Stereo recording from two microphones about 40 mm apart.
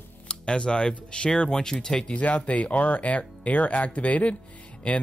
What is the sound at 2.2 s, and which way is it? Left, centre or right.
Speech, left.